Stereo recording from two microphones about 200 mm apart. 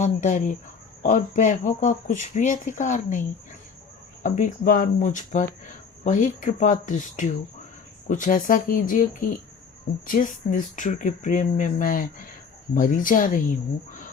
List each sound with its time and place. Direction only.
0.0 s speech: 40° left (ahead or behind)
10.1 s speech: 45° left (ahead or behind)